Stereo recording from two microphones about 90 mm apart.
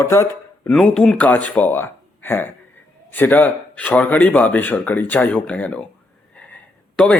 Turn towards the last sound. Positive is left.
turn(degrees=15)  # may be behind; listen again after turning